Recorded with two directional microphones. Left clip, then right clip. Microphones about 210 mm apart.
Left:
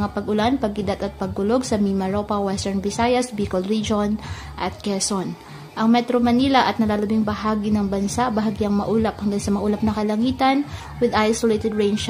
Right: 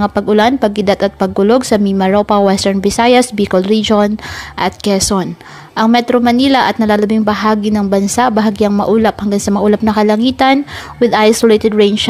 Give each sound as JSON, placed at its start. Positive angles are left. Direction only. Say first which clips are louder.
{"t": 0.0, "sound": "a woman's voice", "louder": "right 11 dB", "side_deg": -35}